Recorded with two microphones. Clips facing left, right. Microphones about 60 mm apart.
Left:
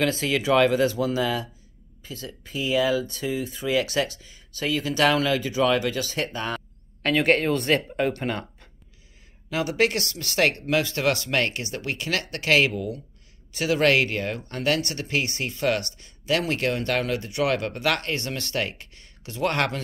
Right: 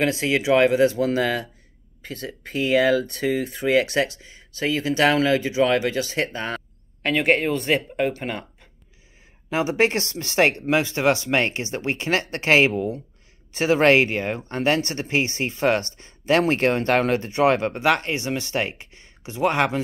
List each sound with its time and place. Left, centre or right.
0.0 s speech: right
0.9 s speech: right
7.0 s speech: centre
9.5 s speech: right